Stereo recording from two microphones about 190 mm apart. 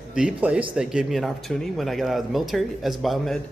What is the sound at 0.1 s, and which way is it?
A man's voice, 5° right (ahead or behind).